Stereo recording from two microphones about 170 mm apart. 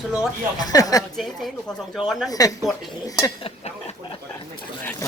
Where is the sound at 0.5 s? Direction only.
20° left (ahead or behind).